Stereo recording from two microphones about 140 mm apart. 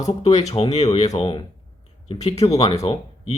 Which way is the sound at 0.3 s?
50° left (ahead or behind).